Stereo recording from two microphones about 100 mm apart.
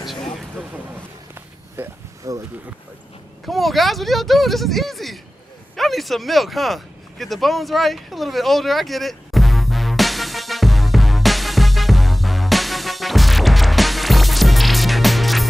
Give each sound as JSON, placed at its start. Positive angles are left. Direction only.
{"t": 0.0, "sound": "vehicle", "side_deg": 0}
{"t": 1.8, "sound": "speech", "side_deg": -20}
{"t": 2.3, "sound": "speech", "side_deg": -35}
{"t": 3.4, "sound": "speech", "side_deg": 0}
{"t": 5.8, "sound": "a sound", "side_deg": 0}